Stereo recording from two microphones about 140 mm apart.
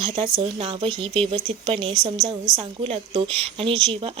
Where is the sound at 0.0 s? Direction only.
40° right (ahead or behind).